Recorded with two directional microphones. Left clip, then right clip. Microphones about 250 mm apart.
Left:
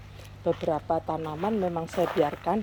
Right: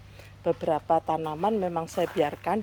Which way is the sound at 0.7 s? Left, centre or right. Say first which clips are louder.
Right 3 dB; right.